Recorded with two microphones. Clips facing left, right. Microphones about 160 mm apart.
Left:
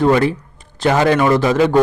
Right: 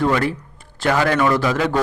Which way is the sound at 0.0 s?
20° left (ahead or behind).